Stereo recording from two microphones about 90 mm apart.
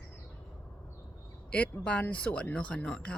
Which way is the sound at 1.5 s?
15° left (ahead or behind).